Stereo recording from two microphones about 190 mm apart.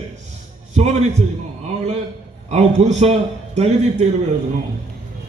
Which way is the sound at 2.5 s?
35° right (ahead or behind).